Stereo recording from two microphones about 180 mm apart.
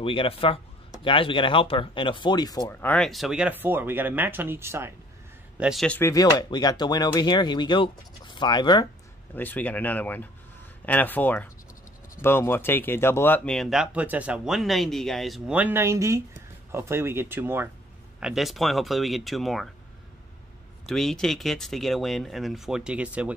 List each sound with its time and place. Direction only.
0.0 s speech: 30° left (ahead or behind)
2.8 s speech: 5° left (ahead or behind); by 4.9 s 15° right (ahead or behind)
5.6 s speech: centre (ahead or behind)
5.9 s speech: 15° left (ahead or behind)
9.3 s speech: 10° left (ahead or behind); by 17.6 s 10° right (ahead or behind)
18.2 s speech: centre (ahead or behind)
20.8 s speech: centre (ahead or behind)